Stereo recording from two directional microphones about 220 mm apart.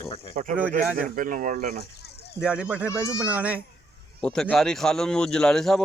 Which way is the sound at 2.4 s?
5° right (ahead or behind).